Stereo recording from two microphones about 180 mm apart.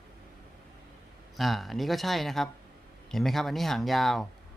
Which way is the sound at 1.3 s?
Centre (ahead or behind).